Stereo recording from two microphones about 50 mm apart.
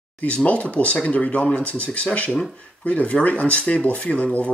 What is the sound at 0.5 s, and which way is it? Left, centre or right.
Speech, left.